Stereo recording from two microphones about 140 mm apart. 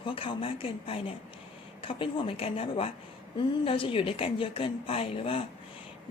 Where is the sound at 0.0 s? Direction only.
40° left (ahead or behind).